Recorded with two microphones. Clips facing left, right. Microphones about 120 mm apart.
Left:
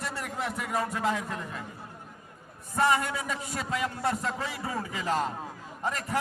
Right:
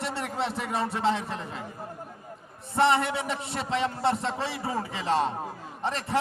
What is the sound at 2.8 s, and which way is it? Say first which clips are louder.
A man's voice: right 3 dB; 25° right (ahead or behind).